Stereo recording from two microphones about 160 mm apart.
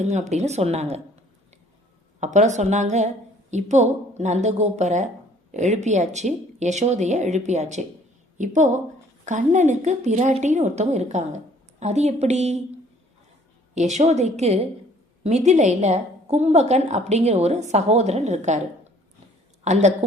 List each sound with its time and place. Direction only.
0.0 s a woman's voice: 45° right (ahead or behind)
2.2 s a woman's voice: 50° right (ahead or behind)
13.7 s a woman's voice: 45° right (ahead or behind)
19.6 s a woman's voice: 45° right (ahead or behind)